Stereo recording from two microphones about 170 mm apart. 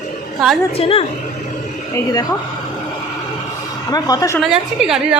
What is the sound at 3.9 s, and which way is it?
Speech, 20° left (ahead or behind).